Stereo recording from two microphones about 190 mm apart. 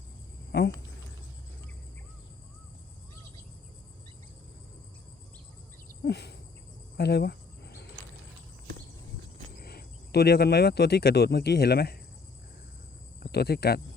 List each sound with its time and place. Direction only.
0.5 s speech: 60° left (ahead or behind)
6.1 s insect: 60° left (ahead or behind)
6.9 s cricket: 60° left (ahead or behind)
9.6 s speech: 55° left (ahead or behind)
13.3 s speech: 60° left (ahead or behind)